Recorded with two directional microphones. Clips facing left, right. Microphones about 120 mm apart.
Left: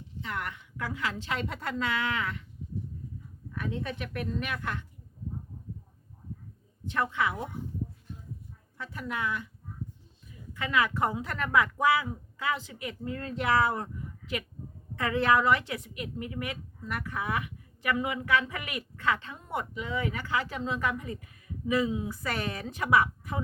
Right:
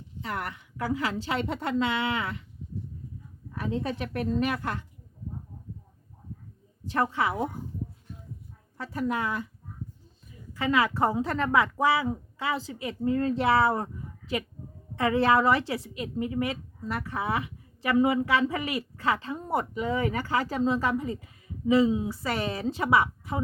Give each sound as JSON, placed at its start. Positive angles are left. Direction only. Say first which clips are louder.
{"t": 0.2, "sound": "a woman's voice", "louder": "right 2 dB", "side_deg": -35}
{"t": 3.5, "sound": "a woman's voice", "louder": "right 4 dB", "side_deg": -30}
{"t": 6.8, "sound": "a woman's voice", "louder": "right 3 dB", "side_deg": -35}
{"t": 8.8, "sound": "a woman's voice", "louder": "right 5 dB", "side_deg": -40}
{"t": 10.5, "sound": "a woman's voice", "louder": "right 3 dB", "side_deg": -30}